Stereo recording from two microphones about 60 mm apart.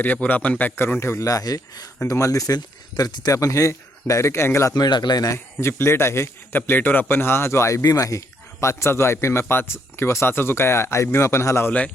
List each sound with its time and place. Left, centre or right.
0.0 s a man's voice: left
0.9 s speech: left
1.2 s speech: left
2.0 s speech: left
4.7 s speech: left
5.5 s speech: left
6.6 s a man's voice: left
8.6 s speech: left